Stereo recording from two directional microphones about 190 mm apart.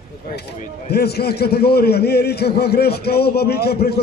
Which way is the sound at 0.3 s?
55° left (ahead or behind).